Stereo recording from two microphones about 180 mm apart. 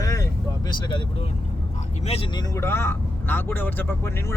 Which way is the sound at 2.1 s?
30° left (ahead or behind).